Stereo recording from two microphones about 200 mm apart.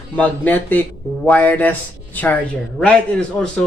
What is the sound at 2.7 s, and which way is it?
Speech, 5° left (ahead or behind).